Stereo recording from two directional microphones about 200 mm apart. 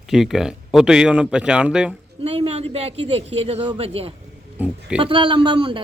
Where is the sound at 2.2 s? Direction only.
30° right (ahead or behind).